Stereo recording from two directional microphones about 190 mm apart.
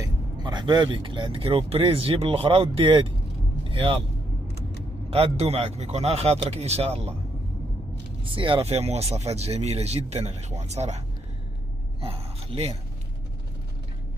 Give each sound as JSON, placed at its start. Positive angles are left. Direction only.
{"t": 0.0, "sound": "speech", "side_deg": -25}
{"t": 5.1, "sound": "speech", "side_deg": -30}
{"t": 8.2, "sound": "speech", "side_deg": -25}
{"t": 12.0, "sound": "speech", "side_deg": -30}